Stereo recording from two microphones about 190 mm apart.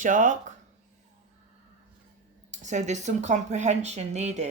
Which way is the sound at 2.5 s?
40° right (ahead or behind).